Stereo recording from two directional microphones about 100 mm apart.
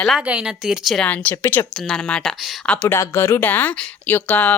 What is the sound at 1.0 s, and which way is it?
Speech, 15° left (ahead or behind).